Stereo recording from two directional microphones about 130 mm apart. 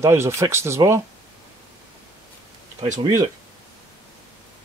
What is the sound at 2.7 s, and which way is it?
Speech, 65° right (ahead or behind).